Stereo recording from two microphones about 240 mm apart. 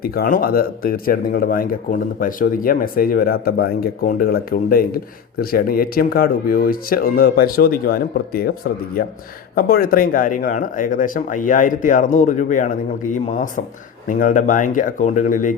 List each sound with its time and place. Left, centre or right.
0.0 s speech: left